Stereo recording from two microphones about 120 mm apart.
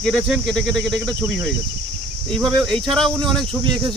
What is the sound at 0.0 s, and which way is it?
Speech, centre (ahead or behind).